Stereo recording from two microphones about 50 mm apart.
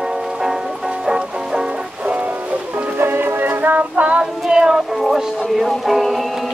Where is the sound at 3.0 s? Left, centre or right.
Right.